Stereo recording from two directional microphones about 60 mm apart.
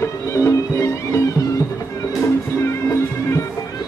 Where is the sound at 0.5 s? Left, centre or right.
Left.